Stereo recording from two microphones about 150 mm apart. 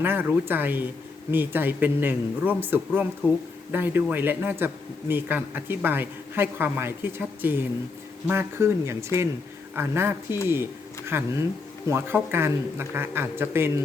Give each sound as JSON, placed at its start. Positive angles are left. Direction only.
{"t": 0.0, "sound": "speech", "side_deg": -15}